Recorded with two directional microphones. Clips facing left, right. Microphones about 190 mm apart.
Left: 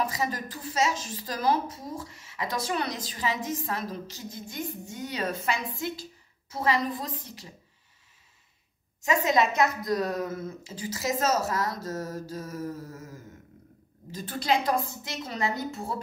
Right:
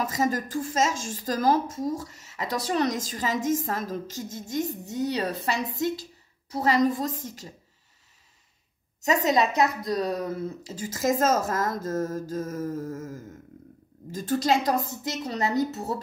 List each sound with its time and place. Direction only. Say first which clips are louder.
0.0 s a woman's voice: right 4 dB; 45° right (ahead or behind)
9.0 s a woman's voice: right 2 dB; 40° right (ahead or behind)